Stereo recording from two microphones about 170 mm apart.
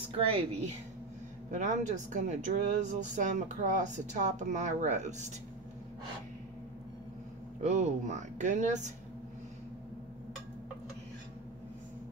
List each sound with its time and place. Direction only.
0.2 s a woman's voice: 35° right (ahead or behind)
1.5 s speech: 45° right (ahead or behind)
7.6 s speech: 40° right (ahead or behind)